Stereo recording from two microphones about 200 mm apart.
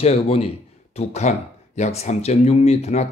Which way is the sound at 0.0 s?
30° left (ahead or behind).